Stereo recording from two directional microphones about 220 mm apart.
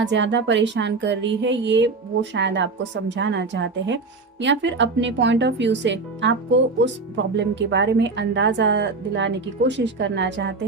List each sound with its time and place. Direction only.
0.0 s speech: 55° right (ahead or behind)
7.3 s speech: 55° right (ahead or behind)